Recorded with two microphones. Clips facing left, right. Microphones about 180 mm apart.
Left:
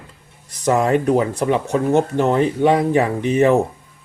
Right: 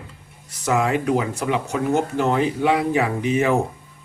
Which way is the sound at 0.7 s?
40° left (ahead or behind).